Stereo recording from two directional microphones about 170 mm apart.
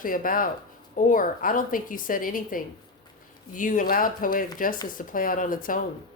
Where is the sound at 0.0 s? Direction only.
55° left (ahead or behind).